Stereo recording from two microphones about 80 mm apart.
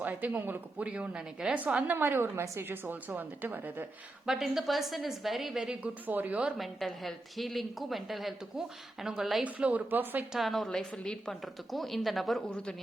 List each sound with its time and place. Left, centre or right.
0.0 s a woman's voice: right
1.9 s a woman's voice: right
4.3 s a woman's voice: centre
6.6 s a woman's voice: centre
9.4 s a woman's voice: centre
10.3 s a woman's voice: centre
12.5 s a man's voice: centre